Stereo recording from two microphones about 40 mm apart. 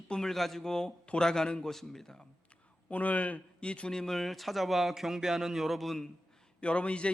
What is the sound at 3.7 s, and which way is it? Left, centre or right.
Speech, left.